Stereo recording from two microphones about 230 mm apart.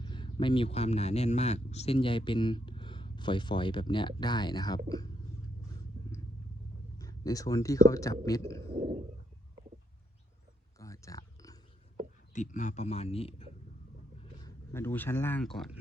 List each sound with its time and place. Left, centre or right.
0.0 s speech: centre
7.0 s speech: centre
10.8 s a sound: centre
12.3 s a man's voice: left
14.4 s speech: centre